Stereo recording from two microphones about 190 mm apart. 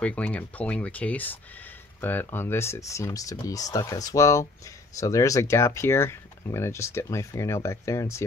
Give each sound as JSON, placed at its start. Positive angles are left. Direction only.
{"t": 0.0, "sound": "speech", "side_deg": 5}